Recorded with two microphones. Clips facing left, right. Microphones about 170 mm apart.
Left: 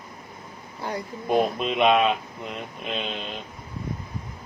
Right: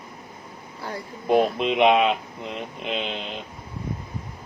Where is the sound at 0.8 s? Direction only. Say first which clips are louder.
Left 3 dB; 20° left (ahead or behind).